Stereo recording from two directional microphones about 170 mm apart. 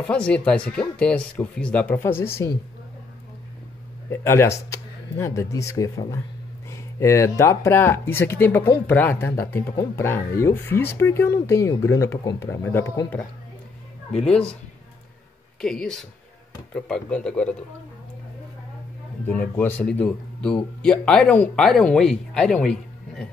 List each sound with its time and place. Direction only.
0.0 s speech: 5° left (ahead or behind)
4.1 s speech: 15° left (ahead or behind)
14.1 s speech: 5° left (ahead or behind)
15.6 s speech: 5° left (ahead or behind)
19.2 s speech: 10° left (ahead or behind)